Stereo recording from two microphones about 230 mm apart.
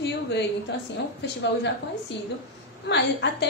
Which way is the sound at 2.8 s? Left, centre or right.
Left.